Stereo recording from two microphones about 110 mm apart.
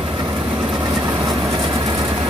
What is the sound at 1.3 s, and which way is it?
Vehicle, 30° right (ahead or behind).